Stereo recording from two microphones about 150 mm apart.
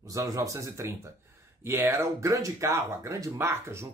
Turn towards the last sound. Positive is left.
turn(degrees=-20)  # may be behind; listen again after turning